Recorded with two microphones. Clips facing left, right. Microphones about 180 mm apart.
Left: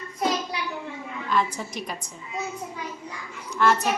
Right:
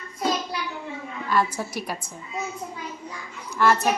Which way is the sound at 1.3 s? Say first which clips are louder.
Right 2 dB; 5° right (ahead or behind).